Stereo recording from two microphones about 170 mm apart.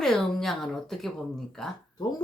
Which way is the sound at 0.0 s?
Centre (ahead or behind).